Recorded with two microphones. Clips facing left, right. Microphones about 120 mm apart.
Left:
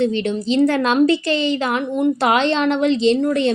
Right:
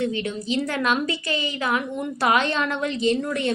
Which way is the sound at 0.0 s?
30° left (ahead or behind).